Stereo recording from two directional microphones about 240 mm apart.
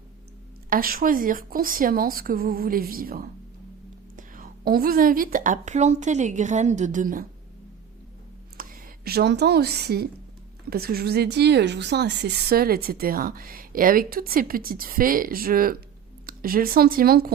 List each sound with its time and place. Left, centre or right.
0.7 s a woman's voice: right
8.5 s a woman's voice: right